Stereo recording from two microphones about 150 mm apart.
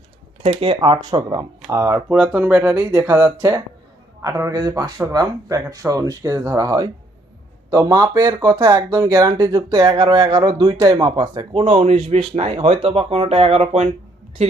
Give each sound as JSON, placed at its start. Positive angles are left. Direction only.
{"t": 0.4, "sound": "speech", "side_deg": -40}
{"t": 2.1, "sound": "speech", "side_deg": -5}
{"t": 11.0, "sound": "speech", "side_deg": -35}
{"t": 11.7, "sound": "speech", "side_deg": -45}